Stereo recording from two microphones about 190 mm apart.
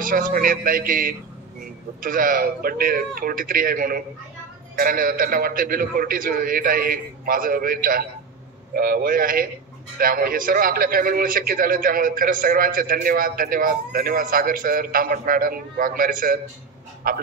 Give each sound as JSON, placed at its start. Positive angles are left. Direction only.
{"t": 0.0, "sound": "a man's voice", "side_deg": -45}